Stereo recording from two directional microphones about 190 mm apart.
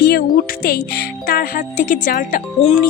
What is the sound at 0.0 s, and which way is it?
Music, 55° left (ahead or behind).